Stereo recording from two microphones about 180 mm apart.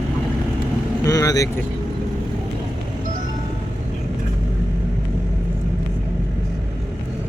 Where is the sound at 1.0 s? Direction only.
20° left (ahead or behind).